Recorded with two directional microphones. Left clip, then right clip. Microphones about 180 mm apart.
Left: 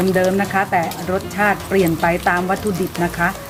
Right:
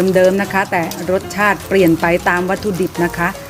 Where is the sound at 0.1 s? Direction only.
35° right (ahead or behind).